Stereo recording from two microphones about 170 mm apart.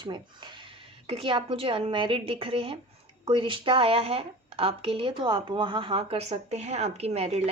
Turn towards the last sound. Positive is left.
turn(degrees=-40)  # may be behind; listen again after turning